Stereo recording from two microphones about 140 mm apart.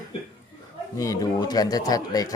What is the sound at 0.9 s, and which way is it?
Speech, 25° left (ahead or behind).